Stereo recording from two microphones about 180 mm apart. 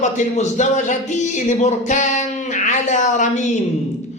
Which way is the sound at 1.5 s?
40° left (ahead or behind).